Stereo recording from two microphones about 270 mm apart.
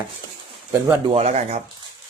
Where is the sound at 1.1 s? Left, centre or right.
Right.